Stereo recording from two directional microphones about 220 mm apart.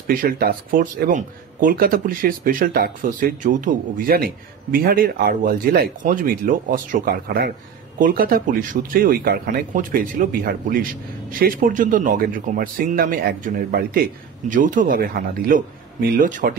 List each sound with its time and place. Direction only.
0.0 s speech: 40° right (ahead or behind)